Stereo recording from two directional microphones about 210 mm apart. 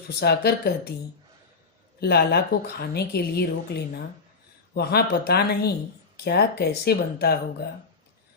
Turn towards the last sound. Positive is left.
turn(degrees=45)  # may be behind; listen again after turning